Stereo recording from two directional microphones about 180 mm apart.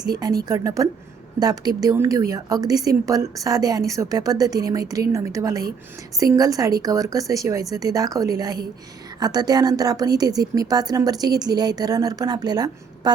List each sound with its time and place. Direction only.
0.4 s a woman's voice: 20° right (ahead or behind)